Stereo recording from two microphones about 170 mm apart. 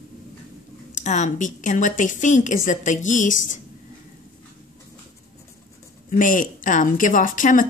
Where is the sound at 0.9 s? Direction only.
45° left (ahead or behind).